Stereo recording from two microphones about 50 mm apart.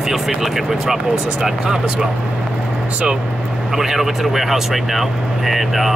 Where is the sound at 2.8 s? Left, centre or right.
Right.